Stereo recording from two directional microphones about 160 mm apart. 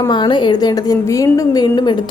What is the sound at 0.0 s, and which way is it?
A woman's voice, 25° left (ahead or behind).